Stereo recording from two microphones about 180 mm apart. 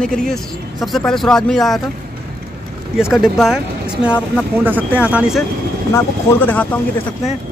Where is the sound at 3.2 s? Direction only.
Centre (ahead or behind).